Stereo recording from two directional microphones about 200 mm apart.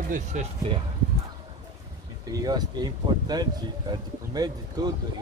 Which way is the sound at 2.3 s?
20° right (ahead or behind).